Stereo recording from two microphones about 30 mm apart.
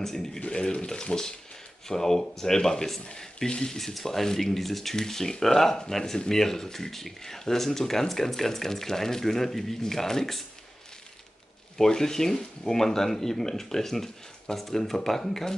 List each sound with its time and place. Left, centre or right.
0.0 s speech: centre
0.5 s speech: left; by 10.4 s centre
11.8 s speech: centre